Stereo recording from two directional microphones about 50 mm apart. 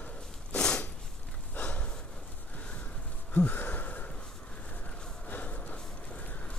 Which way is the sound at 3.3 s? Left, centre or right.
Left.